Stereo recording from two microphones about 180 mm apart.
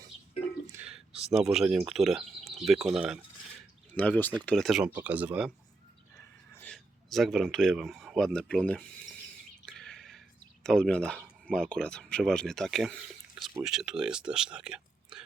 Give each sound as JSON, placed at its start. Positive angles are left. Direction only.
{"t": 0.7, "sound": "a sound", "side_deg": -10}
{"t": 1.3, "sound": "speech", "side_deg": 0}
{"t": 3.9, "sound": "speech", "side_deg": 10}
{"t": 6.6, "sound": "speech", "side_deg": 5}
{"t": 9.6, "sound": "a sound", "side_deg": 5}
{"t": 10.6, "sound": "speech", "side_deg": 5}
{"t": 13.3, "sound": "drip", "side_deg": -20}
{"t": 13.7, "sound": "speech", "side_deg": -5}